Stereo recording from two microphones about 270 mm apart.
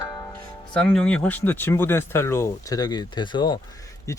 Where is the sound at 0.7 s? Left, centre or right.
Centre.